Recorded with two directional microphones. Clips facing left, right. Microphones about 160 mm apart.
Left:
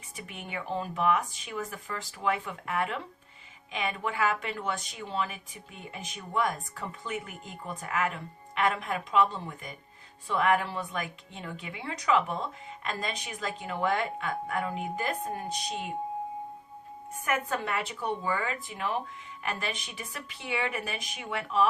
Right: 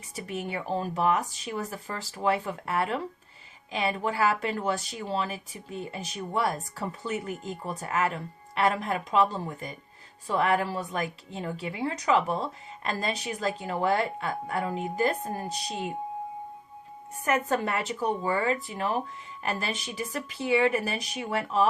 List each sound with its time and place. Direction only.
0.2 s speech: 35° right (ahead or behind)
17.2 s speech: 40° right (ahead or behind)